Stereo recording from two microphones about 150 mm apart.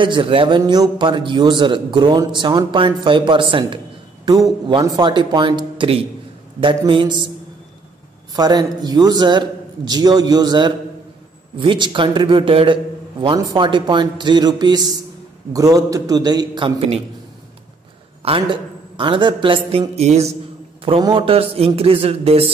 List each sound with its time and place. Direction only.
0.0 s a man's voice: 35° right (ahead or behind)
8.4 s a man's voice: 25° right (ahead or behind)
18.2 s a man's voice: 35° right (ahead or behind)
21.0 s a man's voice: 35° right (ahead or behind)